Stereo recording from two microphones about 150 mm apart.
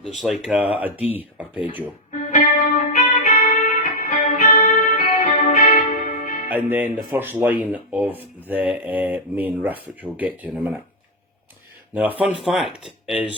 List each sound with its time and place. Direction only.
0.1 s speech: centre (ahead or behind)
2.3 s music: 60° left (ahead or behind)
6.5 s speech: 10° right (ahead or behind)
11.9 s speech: 10° right (ahead or behind)